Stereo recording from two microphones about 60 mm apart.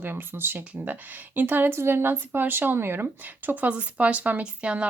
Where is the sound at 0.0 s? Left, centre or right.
Right.